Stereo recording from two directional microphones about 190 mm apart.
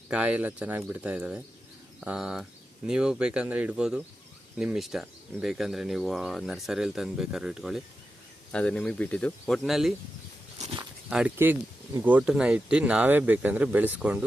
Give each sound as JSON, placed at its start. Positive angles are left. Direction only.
{"t": 0.1, "sound": "speech", "side_deg": -5}
{"t": 10.6, "sound": "walk", "side_deg": -30}
{"t": 11.1, "sound": "speech", "side_deg": -5}